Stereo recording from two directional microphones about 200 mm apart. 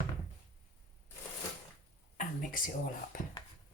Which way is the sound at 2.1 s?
40° left (ahead or behind).